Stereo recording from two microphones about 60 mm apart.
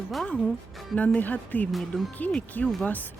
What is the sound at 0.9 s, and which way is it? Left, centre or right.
Speech, left.